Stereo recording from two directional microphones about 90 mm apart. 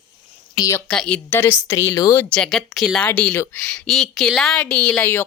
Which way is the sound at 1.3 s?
25° left (ahead or behind).